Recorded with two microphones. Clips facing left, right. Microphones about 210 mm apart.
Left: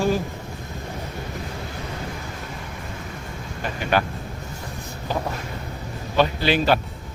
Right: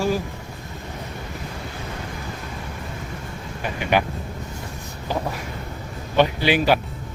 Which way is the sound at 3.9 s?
15° right (ahead or behind).